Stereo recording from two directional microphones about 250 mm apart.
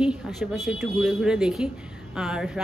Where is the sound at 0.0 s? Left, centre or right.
Centre.